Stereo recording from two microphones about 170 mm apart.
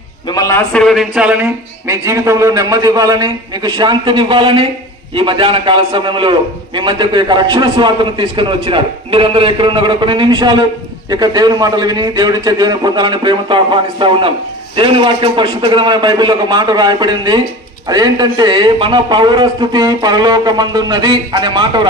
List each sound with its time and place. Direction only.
0.3 s a man's voice: 20° left (ahead or behind); by 21.8 s 25° right (ahead or behind)